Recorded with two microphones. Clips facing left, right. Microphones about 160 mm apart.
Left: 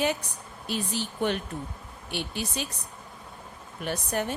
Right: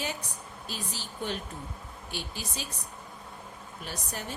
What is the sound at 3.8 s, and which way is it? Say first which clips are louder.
Speech: left 10 dB; 60° left (ahead or behind).